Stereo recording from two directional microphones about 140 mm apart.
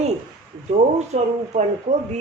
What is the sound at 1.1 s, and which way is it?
Speech, 55° right (ahead or behind).